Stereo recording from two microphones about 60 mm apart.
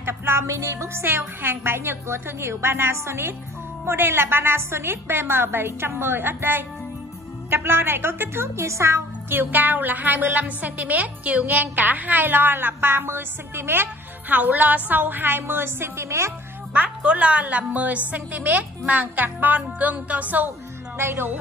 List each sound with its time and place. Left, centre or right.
0.0 s a woman's voice: right
14.3 s a woman's voice: right
16.7 s a woman's voice: right
21.0 s a woman's voice: right